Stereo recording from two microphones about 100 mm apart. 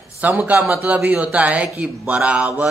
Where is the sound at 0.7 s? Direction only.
25° right (ahead or behind).